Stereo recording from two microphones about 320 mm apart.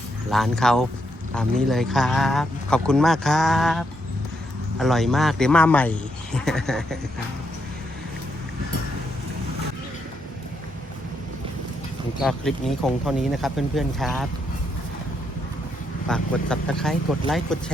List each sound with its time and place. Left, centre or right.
0.3 s speech: centre
12.2 s speech: centre
16.0 s speech: centre